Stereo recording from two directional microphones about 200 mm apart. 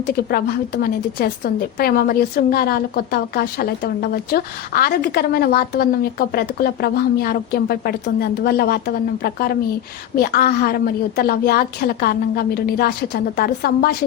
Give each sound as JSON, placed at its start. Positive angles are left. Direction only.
{"t": 0.3, "sound": "a woman's voice", "side_deg": 50}